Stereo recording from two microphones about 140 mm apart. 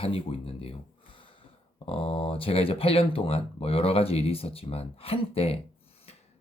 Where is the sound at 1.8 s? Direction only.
40° left (ahead or behind).